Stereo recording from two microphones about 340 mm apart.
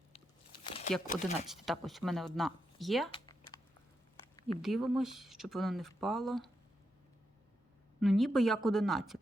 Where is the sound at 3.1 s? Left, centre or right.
Centre.